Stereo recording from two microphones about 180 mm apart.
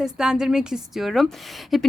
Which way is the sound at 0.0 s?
5° right (ahead or behind).